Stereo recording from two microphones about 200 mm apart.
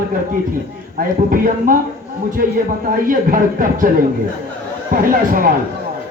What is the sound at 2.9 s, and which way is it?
Speech, 45° right (ahead or behind).